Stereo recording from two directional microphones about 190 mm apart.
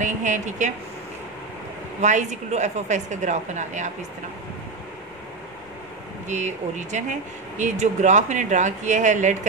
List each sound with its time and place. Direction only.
0.0 s speech: 40° right (ahead or behind)
2.0 s speech: 40° right (ahead or behind)
6.2 s speech: 40° right (ahead or behind)